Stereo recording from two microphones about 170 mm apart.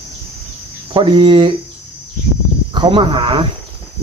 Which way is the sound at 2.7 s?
30° right (ahead or behind).